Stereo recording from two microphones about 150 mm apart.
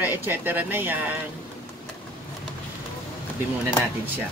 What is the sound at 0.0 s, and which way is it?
Speech, 15° right (ahead or behind).